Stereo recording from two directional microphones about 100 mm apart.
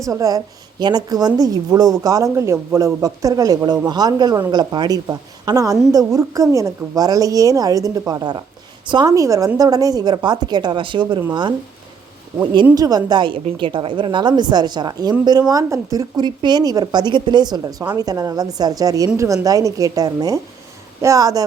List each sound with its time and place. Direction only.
0.0 s a woman's voice: 35° right (ahead or behind)
9.1 s a woman's voice: 35° right (ahead or behind); by 11.5 s 50° right (ahead or behind)
12.7 s speech: 40° right (ahead or behind)
13.1 s a woman's voice: 50° right (ahead or behind); by 16.2 s 35° right (ahead or behind)
16.2 s speech: 45° right (ahead or behind)